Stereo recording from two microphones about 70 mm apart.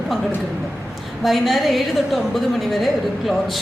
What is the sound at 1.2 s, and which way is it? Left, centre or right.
A woman's voice, centre.